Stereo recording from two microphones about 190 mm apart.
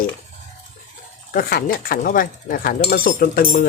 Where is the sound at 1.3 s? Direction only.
55° left (ahead or behind).